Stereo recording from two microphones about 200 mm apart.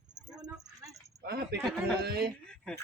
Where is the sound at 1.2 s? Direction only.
55° right (ahead or behind).